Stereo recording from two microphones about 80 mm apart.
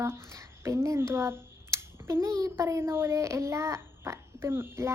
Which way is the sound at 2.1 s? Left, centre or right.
Right.